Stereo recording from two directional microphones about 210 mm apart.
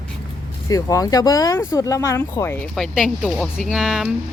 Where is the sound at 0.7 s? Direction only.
15° left (ahead or behind).